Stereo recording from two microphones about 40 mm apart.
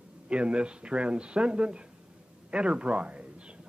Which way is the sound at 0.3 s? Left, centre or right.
Right.